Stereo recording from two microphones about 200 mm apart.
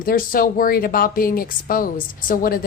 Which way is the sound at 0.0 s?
45° left (ahead or behind).